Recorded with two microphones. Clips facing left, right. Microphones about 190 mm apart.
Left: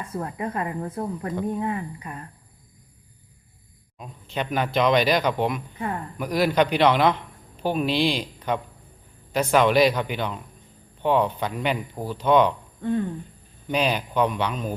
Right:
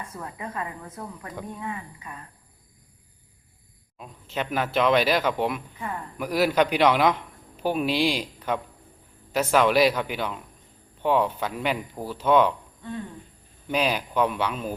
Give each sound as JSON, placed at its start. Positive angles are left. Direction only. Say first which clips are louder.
{"t": 0.2, "sound": "speech", "louder": "left 6 dB", "side_deg": 40}
{"t": 3.9, "sound": "a man's voice", "louder": "left 1 dB", "side_deg": 0}
{"t": 13.7, "sound": "speech", "louder": "left 1 dB", "side_deg": -5}